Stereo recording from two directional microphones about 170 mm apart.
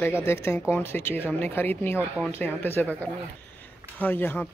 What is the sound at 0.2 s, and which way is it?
Speech, 15° left (ahead or behind).